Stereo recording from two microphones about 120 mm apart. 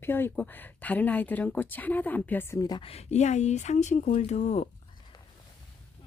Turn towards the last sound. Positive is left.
turn(degrees=70)  # may be behind; listen again after turning